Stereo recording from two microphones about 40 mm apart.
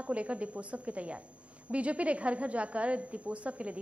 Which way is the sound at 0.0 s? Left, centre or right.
Right.